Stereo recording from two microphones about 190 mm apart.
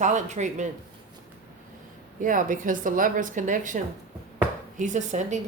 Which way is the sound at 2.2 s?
45° right (ahead or behind).